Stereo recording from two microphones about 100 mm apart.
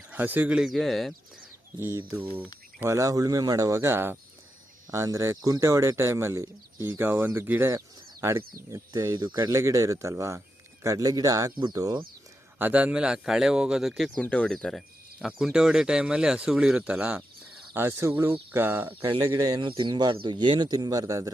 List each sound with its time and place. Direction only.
0.1 s speech: 20° right (ahead or behind); by 1.1 s centre (ahead or behind)
2.8 s speech: 30° right (ahead or behind)
8.7 s speech: 30° right (ahead or behind)
9.1 s speech: 45° right (ahead or behind)
9.5 s speech: 30° right (ahead or behind)
12.5 s speech: 15° right (ahead or behind); by 14.1 s centre (ahead or behind)
14.2 s speech: 10° left (ahead or behind); by 17.2 s 15° right (ahead or behind)
17.7 s speech: 25° right (ahead or behind)
19.2 s speech: 35° right (ahead or behind)
19.6 s speech: 55° right (ahead or behind); by 21.3 s 35° right (ahead or behind)